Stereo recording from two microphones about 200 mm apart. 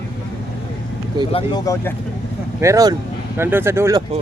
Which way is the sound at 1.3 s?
20° left (ahead or behind).